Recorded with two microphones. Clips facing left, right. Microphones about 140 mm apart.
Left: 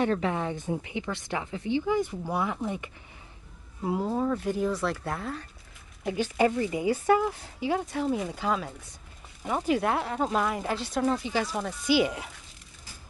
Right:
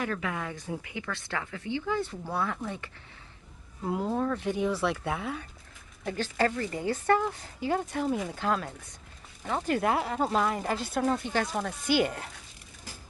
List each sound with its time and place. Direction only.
0.0 s a woman's voice: 30° left (ahead or behind)
3.8 s a woman's voice: 5° left (ahead or behind)
6.0 s a woman's voice: 15° left (ahead or behind)